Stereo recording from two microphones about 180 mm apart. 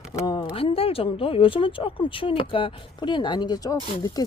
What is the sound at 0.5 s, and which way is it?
Speech, 30° left (ahead or behind).